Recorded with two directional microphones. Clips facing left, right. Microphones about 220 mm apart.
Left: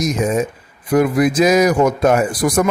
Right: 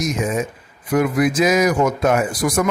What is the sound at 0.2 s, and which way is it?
A man's voice, 35° left (ahead or behind).